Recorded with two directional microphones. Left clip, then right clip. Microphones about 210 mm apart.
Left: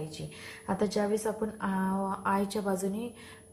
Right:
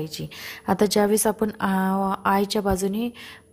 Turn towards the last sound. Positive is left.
turn(degrees=-45)  # may be behind; listen again after turning